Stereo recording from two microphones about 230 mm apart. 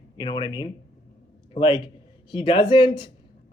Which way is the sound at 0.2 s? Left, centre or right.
Centre.